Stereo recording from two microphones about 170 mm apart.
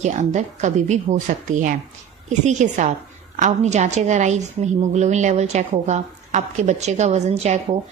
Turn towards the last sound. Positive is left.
turn(degrees=-40)  # may be behind; listen again after turning